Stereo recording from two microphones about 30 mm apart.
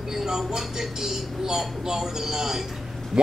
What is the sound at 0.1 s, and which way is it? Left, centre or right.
A man's voice, centre.